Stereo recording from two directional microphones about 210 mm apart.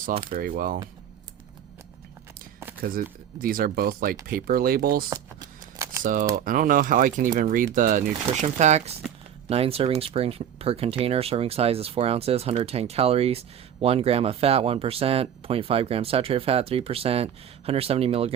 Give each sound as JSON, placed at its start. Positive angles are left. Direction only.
{"t": 0.3, "sound": "speech", "side_deg": -45}
{"t": 2.8, "sound": "speech", "side_deg": -45}
{"t": 5.0, "sound": "shuffling cards", "side_deg": -15}
{"t": 6.0, "sound": "speech", "side_deg": -40}